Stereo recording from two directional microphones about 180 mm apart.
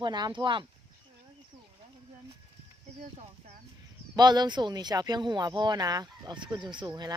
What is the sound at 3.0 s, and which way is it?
Speech, 40° right (ahead or behind).